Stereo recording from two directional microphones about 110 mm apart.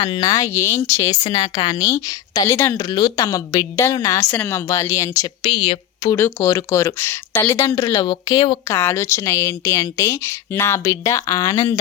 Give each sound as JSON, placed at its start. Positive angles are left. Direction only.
{"t": 0.0, "sound": "a woman's voice", "side_deg": 35}
{"t": 1.2, "sound": "a woman's voice", "side_deg": 40}
{"t": 4.3, "sound": "a woman's voice", "side_deg": 20}
{"t": 5.5, "sound": "speech", "side_deg": 65}
{"t": 6.1, "sound": "a woman's voice", "side_deg": 20}
{"t": 8.0, "sound": "a woman's voice", "side_deg": 40}
{"t": 8.6, "sound": "a woman's voice", "side_deg": 25}